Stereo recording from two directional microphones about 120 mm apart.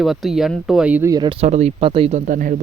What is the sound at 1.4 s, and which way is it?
Speech, 65° right (ahead or behind).